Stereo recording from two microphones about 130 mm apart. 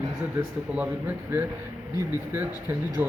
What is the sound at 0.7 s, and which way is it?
Speech, 10° right (ahead or behind).